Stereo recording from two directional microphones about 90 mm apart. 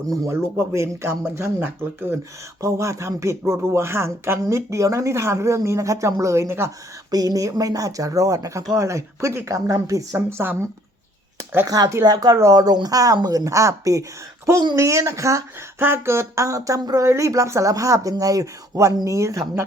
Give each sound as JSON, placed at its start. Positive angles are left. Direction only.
{"t": 0.1, "sound": "speech", "side_deg": -30}
{"t": 2.6, "sound": "speech", "side_deg": -35}
{"t": 7.1, "sound": "speech", "side_deg": -45}
{"t": 10.2, "sound": "speech", "side_deg": -25}
{"t": 11.7, "sound": "speech", "side_deg": -45}